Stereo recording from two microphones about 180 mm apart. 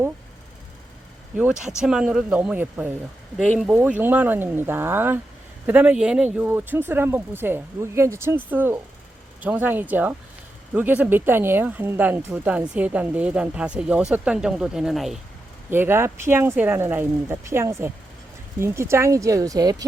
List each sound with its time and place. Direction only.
1.4 s speech: 5° right (ahead or behind)
3.3 s speech: 5° left (ahead or behind)
3.7 s speech: 10° right (ahead or behind)
15.7 s speech: 15° right (ahead or behind)